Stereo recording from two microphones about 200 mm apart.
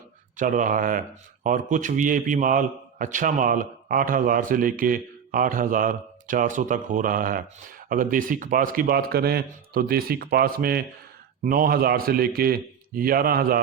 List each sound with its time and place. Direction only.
0.3 s a man's voice: 40° right (ahead or behind)